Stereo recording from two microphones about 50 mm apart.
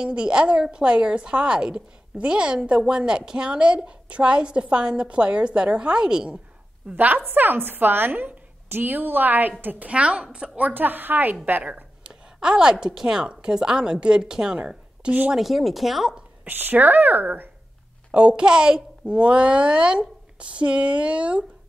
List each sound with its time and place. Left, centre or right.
0.0 s a woman's voice: centre
7.0 s a woman's voice: right
9.8 s a woman's voice: right
10.7 s a woman's voice: right
11.6 s a sound: right
12.8 s a woman's voice: centre
15.3 s speech: centre
16.4 s a woman's voice: right
18.1 s a woman's voice: right